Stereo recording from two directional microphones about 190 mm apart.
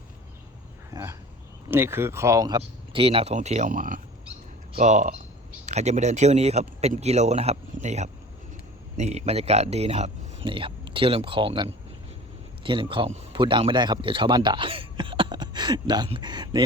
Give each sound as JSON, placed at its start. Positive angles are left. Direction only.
{"t": 1.7, "sound": "speech", "side_deg": -10}
{"t": 2.6, "sound": "a man's voice", "side_deg": -30}